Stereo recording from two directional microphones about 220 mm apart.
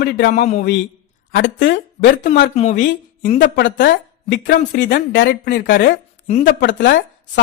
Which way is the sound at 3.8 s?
55° left (ahead or behind).